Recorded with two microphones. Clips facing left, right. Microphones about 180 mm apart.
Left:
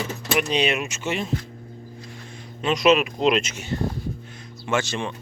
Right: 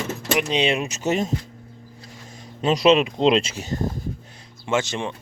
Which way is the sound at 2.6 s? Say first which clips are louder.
Right 2 dB; 35° right (ahead or behind).